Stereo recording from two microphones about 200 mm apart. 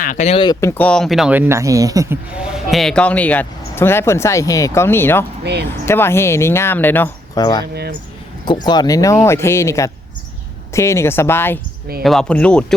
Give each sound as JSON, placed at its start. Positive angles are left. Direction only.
{"t": 0.0, "sound": "speech", "side_deg": 40}
{"t": 0.6, "sound": "speech", "side_deg": 10}
{"t": 2.3, "sound": "speech", "side_deg": 0}
{"t": 7.6, "sound": "speech", "side_deg": -55}
{"t": 8.4, "sound": "speech", "side_deg": 20}